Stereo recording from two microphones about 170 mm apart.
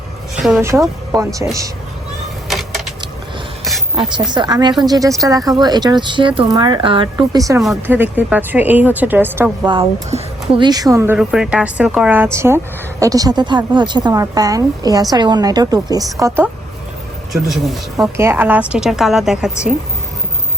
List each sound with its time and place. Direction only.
0.3 s a sound: centre (ahead or behind)
1.1 s speech: 20° right (ahead or behind)
2.5 s a sound: centre (ahead or behind)
4.4 s a woman's voice: 25° right (ahead or behind)
9.7 s speech: 25° right (ahead or behind)
11.2 s a woman's voice: 5° right (ahead or behind)
17.3 s a woman's voice: centre (ahead or behind)
18.2 s a woman's voice: 10° right (ahead or behind)